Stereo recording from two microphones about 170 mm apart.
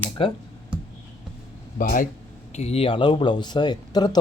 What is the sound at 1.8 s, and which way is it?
Speech, 50° left (ahead or behind).